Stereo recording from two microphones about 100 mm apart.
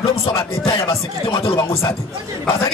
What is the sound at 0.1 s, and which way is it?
Music, 75° left (ahead or behind).